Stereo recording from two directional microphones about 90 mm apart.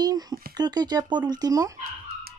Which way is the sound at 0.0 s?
45° right (ahead or behind).